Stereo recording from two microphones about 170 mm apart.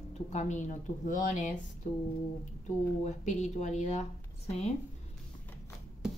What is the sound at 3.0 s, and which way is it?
Speech, 40° left (ahead or behind).